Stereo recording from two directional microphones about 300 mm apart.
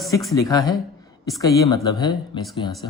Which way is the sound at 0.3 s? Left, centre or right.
Centre.